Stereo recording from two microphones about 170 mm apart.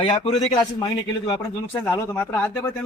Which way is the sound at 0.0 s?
25° left (ahead or behind).